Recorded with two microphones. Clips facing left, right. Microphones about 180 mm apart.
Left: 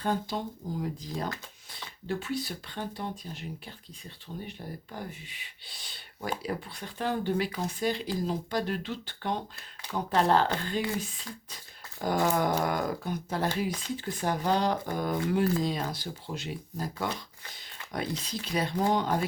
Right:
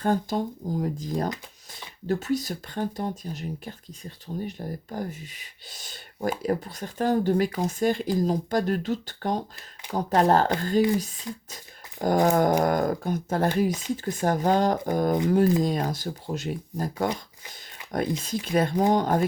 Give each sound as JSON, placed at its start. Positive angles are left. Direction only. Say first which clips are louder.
{"t": 0.0, "sound": "speech", "louder": "right 6 dB", "side_deg": -45}
{"t": 11.3, "sound": "speech", "louder": "right 7 dB", "side_deg": -20}
{"t": 12.0, "sound": "speech", "louder": "right 6 dB", "side_deg": -45}
{"t": 18.2, "sound": "speech", "louder": "right 7 dB", "side_deg": -50}